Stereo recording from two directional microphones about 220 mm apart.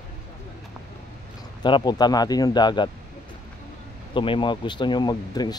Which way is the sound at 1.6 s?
20° left (ahead or behind).